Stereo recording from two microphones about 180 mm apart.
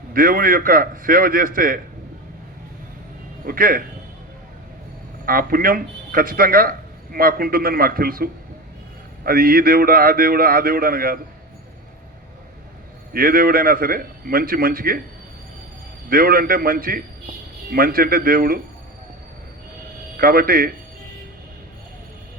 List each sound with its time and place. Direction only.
0.1 s a man's voice: 55° right (ahead or behind)
3.4 s a man's voice: 50° right (ahead or behind)
5.2 s a man's voice: 55° right (ahead or behind)
13.1 s a man's voice: 55° right (ahead or behind)
16.0 s a man's voice: 55° right (ahead or behind)
20.1 s a man's voice: 55° right (ahead or behind)